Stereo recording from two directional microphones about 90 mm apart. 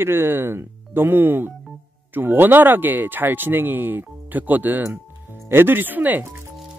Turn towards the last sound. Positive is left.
turn(degrees=-20)  # may be behind; listen again after turning